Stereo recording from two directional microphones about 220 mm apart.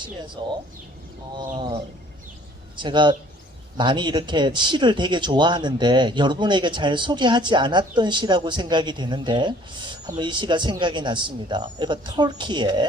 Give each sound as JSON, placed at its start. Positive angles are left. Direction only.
{"t": 0.4, "sound": "speech", "side_deg": -20}
{"t": 1.5, "sound": "speech", "side_deg": -20}